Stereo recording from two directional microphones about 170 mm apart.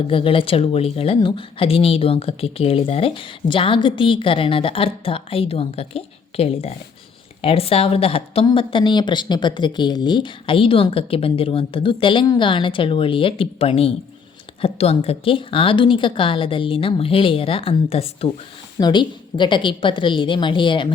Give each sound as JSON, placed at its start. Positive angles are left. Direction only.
{"t": 0.1, "sound": "a woman's voice", "side_deg": 30}